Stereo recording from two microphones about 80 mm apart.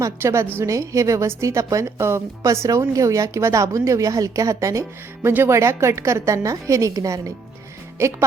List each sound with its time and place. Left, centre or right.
0.2 s a woman's voice: right
5.3 s a woman's voice: right
8.0 s a woman's voice: right